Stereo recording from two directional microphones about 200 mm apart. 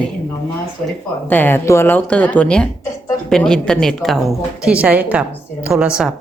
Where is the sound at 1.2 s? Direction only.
10° left (ahead or behind).